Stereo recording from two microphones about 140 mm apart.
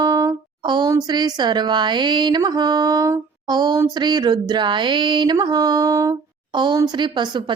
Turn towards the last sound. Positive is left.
turn(degrees=-30)  # may be behind; listen again after turning